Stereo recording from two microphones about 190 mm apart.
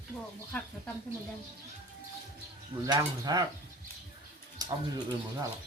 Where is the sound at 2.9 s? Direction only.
20° right (ahead or behind).